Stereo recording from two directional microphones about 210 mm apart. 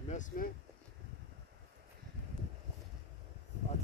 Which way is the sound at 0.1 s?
35° left (ahead or behind).